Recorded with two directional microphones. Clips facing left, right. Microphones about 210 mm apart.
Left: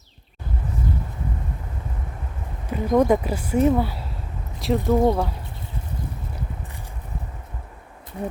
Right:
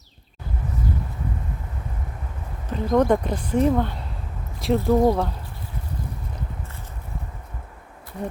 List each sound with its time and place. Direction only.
2.6 s speech: 10° left (ahead or behind)